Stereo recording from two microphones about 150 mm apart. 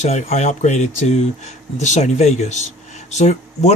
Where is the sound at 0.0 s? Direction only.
50° left (ahead or behind).